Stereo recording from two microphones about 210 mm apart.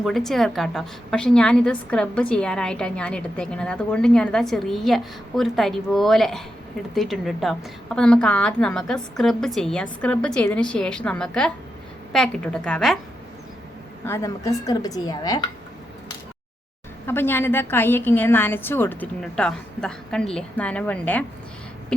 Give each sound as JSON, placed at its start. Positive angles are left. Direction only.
{"t": 0.0, "sound": "a woman's voice", "side_deg": 0}
{"t": 14.1, "sound": "a woman's voice", "side_deg": 15}
{"t": 17.1, "sound": "a woman's voice", "side_deg": 10}